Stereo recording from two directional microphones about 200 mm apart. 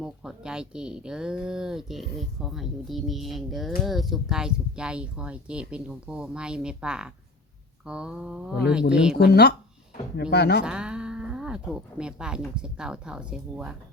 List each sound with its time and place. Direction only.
0.0 s speech: 5° right (ahead or behind)
9.1 s speech: 55° left (ahead or behind)
10.6 s speech: 5° right (ahead or behind)